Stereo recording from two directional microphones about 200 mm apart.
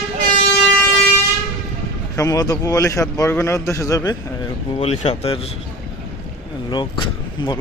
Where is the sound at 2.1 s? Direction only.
15° left (ahead or behind).